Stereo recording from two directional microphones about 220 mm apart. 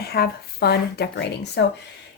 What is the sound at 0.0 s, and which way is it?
Speech, 45° left (ahead or behind).